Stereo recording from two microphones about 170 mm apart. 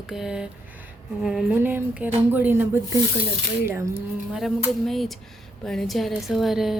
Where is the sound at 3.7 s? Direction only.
15° right (ahead or behind).